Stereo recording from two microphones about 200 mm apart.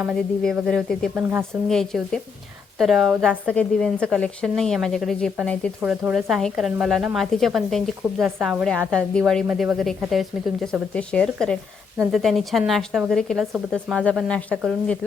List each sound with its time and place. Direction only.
0.0 s a woman's voice: centre (ahead or behind)
13.5 s speech: 10° right (ahead or behind)
13.9 s a woman's voice: 5° left (ahead or behind)